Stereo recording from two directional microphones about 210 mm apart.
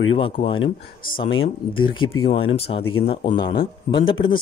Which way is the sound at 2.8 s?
90° left.